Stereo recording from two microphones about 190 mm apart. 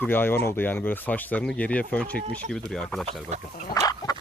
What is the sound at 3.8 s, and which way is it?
Chicken, 20° left (ahead or behind).